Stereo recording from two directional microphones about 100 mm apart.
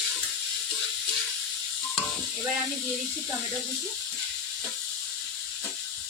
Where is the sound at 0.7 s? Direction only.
Centre (ahead or behind).